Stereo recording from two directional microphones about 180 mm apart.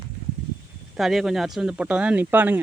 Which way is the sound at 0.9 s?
Centre (ahead or behind).